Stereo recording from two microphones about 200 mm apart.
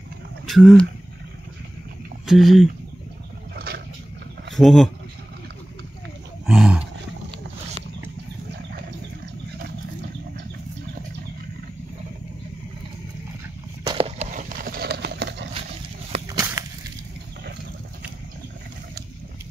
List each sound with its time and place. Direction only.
0.5 s speech: centre (ahead or behind)
2.2 s speech: centre (ahead or behind)
3.5 s vehicle: 50° right (ahead or behind)
4.6 s speech: centre (ahead or behind)
6.4 s roaring cats: 5° right (ahead or behind)
13.8 s clip-clop: 30° right (ahead or behind); by 15.5 s 60° right (ahead or behind)
16.3 s a sound: 15° right (ahead or behind)